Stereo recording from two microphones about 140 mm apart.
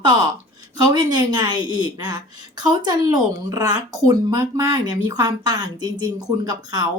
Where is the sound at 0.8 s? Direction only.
30° right (ahead or behind).